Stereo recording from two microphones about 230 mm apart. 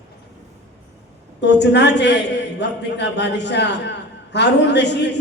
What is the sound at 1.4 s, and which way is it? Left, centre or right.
A man's voice, left.